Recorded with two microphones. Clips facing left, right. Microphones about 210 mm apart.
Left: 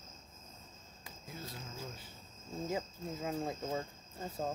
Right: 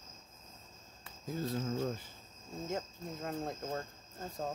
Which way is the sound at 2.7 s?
5° left (ahead or behind).